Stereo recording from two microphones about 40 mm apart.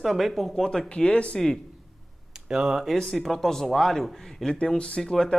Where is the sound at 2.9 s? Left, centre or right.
Centre.